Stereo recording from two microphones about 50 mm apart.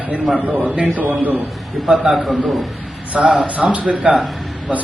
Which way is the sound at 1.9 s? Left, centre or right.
Centre.